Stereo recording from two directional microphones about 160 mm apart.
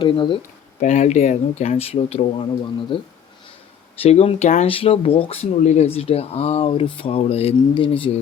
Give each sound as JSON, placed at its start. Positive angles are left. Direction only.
{"t": 0.0, "sound": "speech", "side_deg": 30}
{"t": 0.8, "sound": "speech", "side_deg": 50}
{"t": 4.7, "sound": "speech", "side_deg": 35}